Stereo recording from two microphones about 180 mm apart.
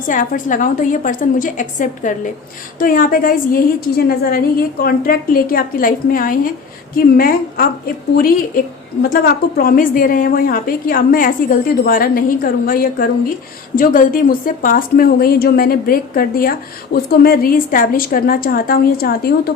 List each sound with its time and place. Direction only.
0.1 s a woman's voice: 45° left (ahead or behind)